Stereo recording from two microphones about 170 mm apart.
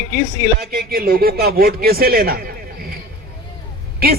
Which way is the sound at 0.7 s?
60° right (ahead or behind).